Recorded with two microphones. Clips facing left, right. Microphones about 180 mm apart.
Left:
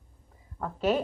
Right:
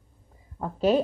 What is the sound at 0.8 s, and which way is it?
Speech, 35° right (ahead or behind).